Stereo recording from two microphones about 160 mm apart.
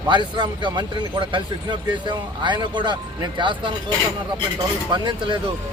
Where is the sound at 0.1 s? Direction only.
30° right (ahead or behind).